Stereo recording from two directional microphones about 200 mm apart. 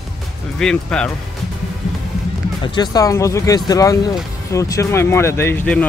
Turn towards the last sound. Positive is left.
turn(degrees=10)  # may be behind; listen again after turning